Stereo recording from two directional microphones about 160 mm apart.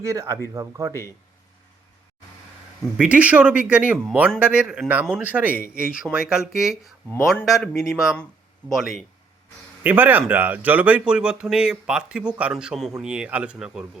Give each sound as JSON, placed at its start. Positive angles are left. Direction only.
{"t": 0.0, "sound": "speech", "side_deg": -20}
{"t": 3.0, "sound": "speech", "side_deg": -10}